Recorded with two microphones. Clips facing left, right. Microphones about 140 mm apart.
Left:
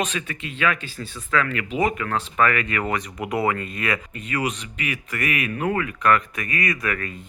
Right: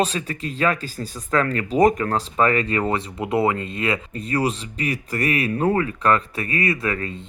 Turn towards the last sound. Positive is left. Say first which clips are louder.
# right 2 dB
turn(degrees=-25)  # may be behind; listen again after turning